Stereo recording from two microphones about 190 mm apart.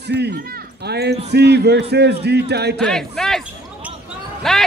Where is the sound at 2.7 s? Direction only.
5° left (ahead or behind).